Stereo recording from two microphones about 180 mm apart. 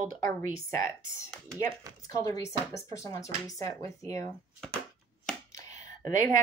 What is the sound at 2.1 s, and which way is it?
A woman's voice, 15° left (ahead or behind).